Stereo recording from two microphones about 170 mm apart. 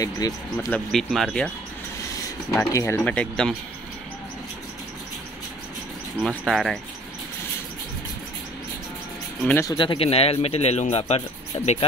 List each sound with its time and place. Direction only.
0.0 s speech: 20° left (ahead or behind)
2.7 s speech: 15° left (ahead or behind)
6.2 s speech: centre (ahead or behind)
9.5 s speech: 15° left (ahead or behind)
9.8 s speech: 30° left (ahead or behind)